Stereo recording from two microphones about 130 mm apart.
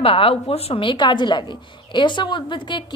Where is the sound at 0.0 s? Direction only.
45° left (ahead or behind).